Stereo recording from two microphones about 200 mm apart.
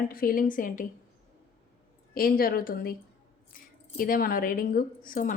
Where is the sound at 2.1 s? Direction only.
45° left (ahead or behind).